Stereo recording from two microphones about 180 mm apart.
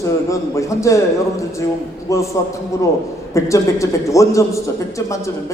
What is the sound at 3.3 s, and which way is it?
A man's voice, 15° left (ahead or behind).